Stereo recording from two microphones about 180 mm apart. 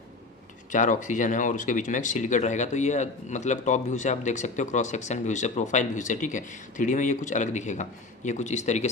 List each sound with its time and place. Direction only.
0.7 s speech: 45° left (ahead or behind)